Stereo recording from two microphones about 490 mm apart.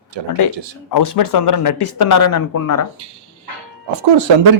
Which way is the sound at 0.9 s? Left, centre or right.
Left.